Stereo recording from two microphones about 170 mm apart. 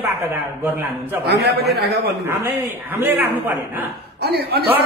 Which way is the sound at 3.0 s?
10° right (ahead or behind).